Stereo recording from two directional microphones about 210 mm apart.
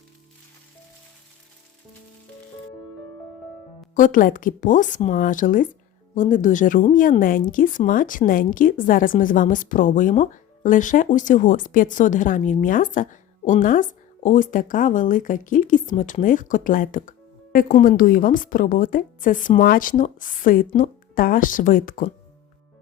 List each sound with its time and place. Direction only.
3.9 s speech: 40° left (ahead or behind)